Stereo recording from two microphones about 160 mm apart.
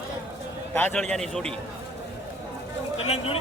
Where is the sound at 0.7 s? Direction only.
10° left (ahead or behind).